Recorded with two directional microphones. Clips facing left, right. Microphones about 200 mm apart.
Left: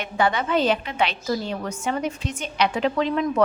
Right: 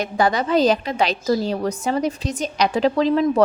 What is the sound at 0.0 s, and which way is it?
A woman's voice, 40° right (ahead or behind).